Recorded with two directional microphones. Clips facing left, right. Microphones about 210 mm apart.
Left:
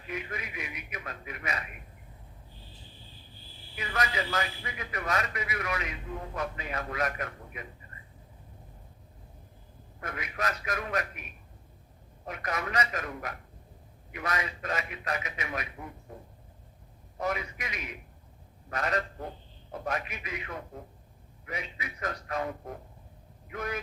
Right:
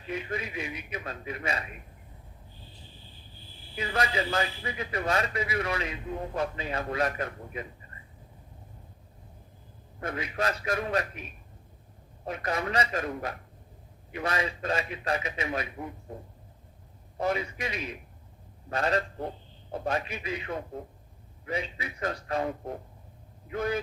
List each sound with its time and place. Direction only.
0.1 s a man's voice: 30° right (ahead or behind)
3.8 s a man's voice: 30° right (ahead or behind)
10.0 s a man's voice: 30° right (ahead or behind)
12.2 s a man's voice: 30° right (ahead or behind)
17.2 s a man's voice: 30° right (ahead or behind)